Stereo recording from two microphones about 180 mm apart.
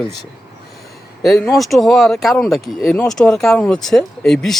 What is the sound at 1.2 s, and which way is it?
Speech, centre (ahead or behind).